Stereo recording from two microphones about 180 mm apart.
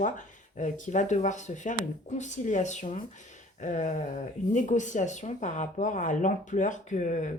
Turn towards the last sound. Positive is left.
turn(degrees=40)  # may be behind; listen again after turning